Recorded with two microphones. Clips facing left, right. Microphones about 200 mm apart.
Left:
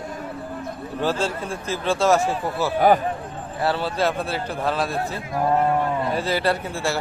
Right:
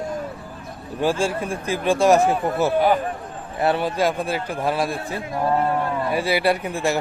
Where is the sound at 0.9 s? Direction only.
10° right (ahead or behind).